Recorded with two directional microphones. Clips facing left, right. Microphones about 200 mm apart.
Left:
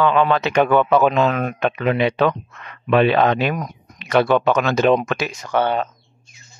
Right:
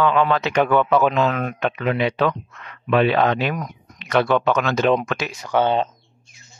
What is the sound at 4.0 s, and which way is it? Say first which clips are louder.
Speech: left 2 dB; 10° left (ahead or behind).